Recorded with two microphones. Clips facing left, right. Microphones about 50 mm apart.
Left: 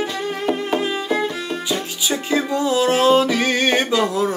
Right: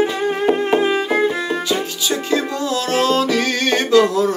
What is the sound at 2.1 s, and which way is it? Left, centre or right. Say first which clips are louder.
Music: even; centre.